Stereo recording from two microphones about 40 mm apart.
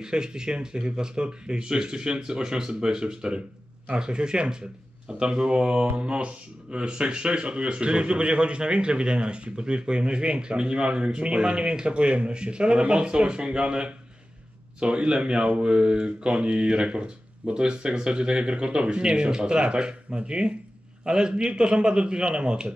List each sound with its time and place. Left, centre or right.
0.0 s speech: centre